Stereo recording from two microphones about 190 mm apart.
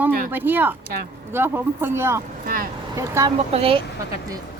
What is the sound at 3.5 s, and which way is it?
Speech, 30° right (ahead or behind).